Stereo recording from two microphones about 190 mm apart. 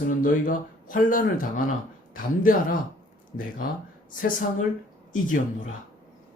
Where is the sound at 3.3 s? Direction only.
70° left (ahead or behind).